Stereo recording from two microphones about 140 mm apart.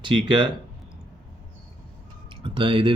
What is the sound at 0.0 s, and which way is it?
Speech, 35° right (ahead or behind).